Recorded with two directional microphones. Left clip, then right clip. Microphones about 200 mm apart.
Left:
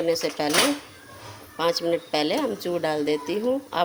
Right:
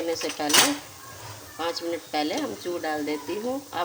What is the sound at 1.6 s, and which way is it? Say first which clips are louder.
Speech: left 6 dB; 35° left (ahead or behind).